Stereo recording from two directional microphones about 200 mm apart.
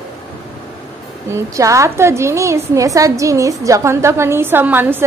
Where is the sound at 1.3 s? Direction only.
15° right (ahead or behind).